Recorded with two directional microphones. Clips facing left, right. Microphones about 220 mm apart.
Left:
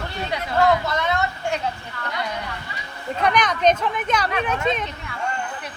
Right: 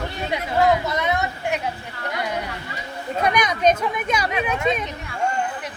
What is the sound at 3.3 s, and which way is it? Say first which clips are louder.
Speech: even; 10° right (ahead or behind).